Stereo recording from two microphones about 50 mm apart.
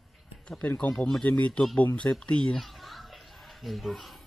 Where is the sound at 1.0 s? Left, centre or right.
Centre.